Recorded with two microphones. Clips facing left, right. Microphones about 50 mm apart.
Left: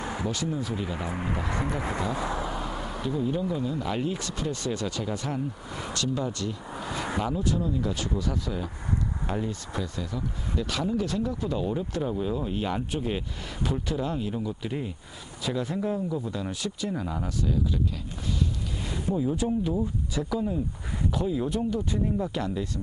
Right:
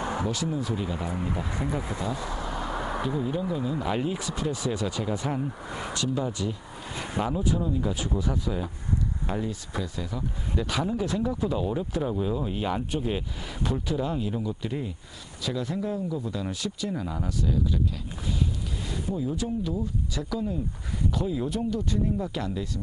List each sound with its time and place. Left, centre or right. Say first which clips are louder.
0.2 s speech: right 1 dB; centre
1.1 s speech: left 1 dB; left
2.4 s speech: right 1 dB; centre
19.1 s speech: left 4 dB; centre